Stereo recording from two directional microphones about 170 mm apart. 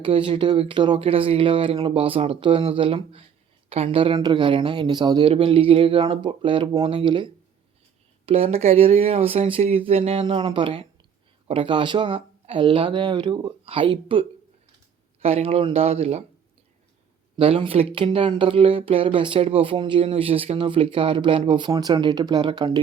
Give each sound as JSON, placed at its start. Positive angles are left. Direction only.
{"t": 0.0, "sound": "speech", "side_deg": -30}
{"t": 8.3, "sound": "speech", "side_deg": -35}
{"t": 17.3, "sound": "speech", "side_deg": -30}